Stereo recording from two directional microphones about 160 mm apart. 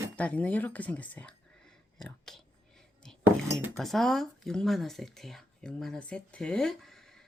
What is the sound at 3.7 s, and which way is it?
Speech, centre (ahead or behind).